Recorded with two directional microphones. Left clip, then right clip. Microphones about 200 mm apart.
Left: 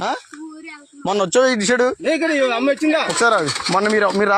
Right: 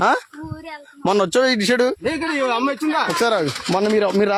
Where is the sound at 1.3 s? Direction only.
10° right (ahead or behind).